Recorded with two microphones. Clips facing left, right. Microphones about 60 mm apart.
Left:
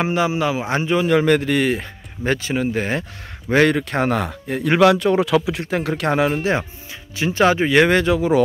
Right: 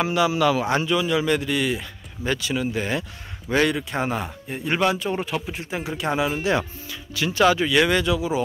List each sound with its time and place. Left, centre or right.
0.0 s a man's voice: left
0.9 s speech: left
6.4 s speech: left